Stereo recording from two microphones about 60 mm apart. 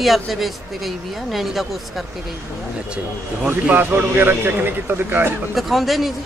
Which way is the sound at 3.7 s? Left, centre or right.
Right.